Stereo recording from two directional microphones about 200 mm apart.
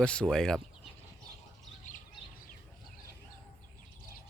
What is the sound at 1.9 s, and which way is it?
Bird, 40° left (ahead or behind).